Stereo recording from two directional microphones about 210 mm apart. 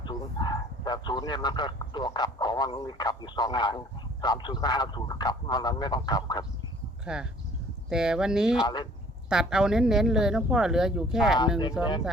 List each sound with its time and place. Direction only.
0.0 s speech: 20° left (ahead or behind)
7.0 s speech: 5° right (ahead or behind)
8.6 s speech: 20° left (ahead or behind)
9.3 s speech: 5° right (ahead or behind)